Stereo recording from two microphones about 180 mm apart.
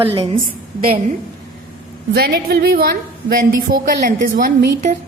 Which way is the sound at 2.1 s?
60° right (ahead or behind).